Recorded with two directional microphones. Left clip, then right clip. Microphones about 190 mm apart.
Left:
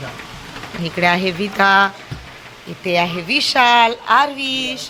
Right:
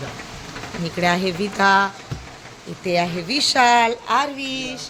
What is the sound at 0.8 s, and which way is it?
Speech, centre (ahead or behind).